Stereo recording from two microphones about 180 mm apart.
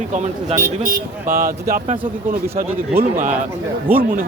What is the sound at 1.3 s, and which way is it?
Speech, 55° right (ahead or behind).